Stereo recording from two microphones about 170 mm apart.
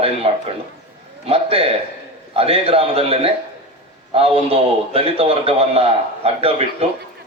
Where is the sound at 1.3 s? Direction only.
35° right (ahead or behind).